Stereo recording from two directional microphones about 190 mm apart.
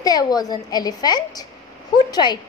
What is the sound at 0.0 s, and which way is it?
A woman's voice, 20° left (ahead or behind).